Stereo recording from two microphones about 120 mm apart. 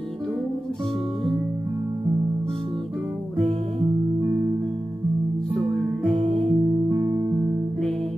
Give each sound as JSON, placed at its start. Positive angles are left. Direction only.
{"t": 6.1, "sound": "music", "side_deg": -45}